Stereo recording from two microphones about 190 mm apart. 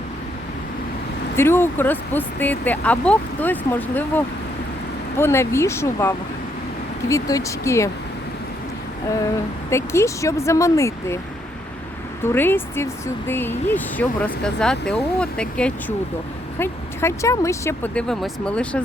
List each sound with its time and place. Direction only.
1.4 s speech: 10° left (ahead or behind)
9.6 s speech: 15° left (ahead or behind)
12.2 s speech: 10° left (ahead or behind)